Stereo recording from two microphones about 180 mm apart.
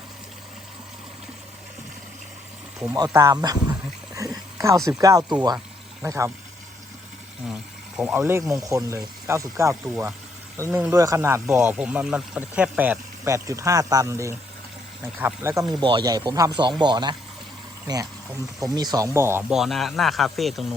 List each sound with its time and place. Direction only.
2.9 s a sound: 20° right (ahead or behind)
4.9 s speech: 20° right (ahead or behind)
7.9 s speech: 5° right (ahead or behind)
15.8 s speech: 25° right (ahead or behind)
18.6 s speech: 20° right (ahead or behind); by 20.7 s centre (ahead or behind)